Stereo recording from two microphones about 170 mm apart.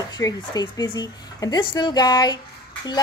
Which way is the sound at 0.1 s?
20° left (ahead or behind).